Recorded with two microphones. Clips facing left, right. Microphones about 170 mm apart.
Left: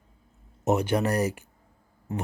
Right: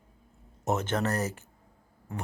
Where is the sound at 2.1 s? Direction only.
20° left (ahead or behind).